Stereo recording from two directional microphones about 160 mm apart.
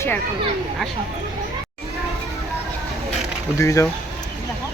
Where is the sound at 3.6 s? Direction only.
20° left (ahead or behind).